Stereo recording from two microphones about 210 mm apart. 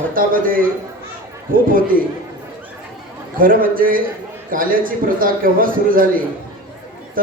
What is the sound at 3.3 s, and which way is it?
A man's voice, 40° right (ahead or behind).